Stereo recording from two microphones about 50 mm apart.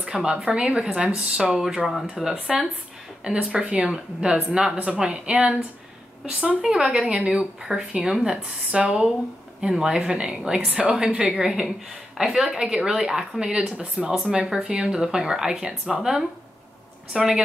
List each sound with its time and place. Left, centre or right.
0.0 s a woman's voice: centre
3.3 s a woman's voice: centre
6.2 s speech: centre
8.7 s a woman's voice: right; by 17.4 s centre